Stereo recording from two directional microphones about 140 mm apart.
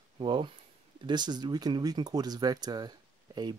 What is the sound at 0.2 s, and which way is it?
Speech, 35° right (ahead or behind).